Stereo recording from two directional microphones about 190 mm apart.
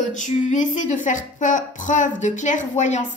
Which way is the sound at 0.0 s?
40° left (ahead or behind).